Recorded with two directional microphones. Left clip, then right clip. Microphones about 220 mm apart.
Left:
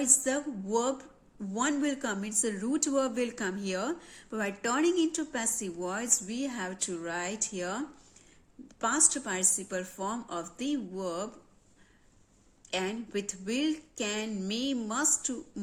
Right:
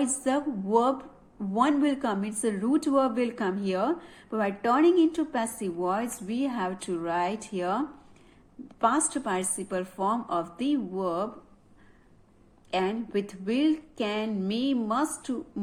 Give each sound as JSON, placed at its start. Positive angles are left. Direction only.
{"t": 0.0, "sound": "a woman's voice", "side_deg": 25}
{"t": 12.7, "sound": "a woman's voice", "side_deg": 30}